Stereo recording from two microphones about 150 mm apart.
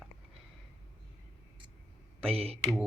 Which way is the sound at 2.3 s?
40° right (ahead or behind).